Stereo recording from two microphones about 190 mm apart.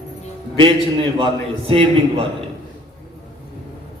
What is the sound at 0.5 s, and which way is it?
A man's voice, 25° right (ahead or behind).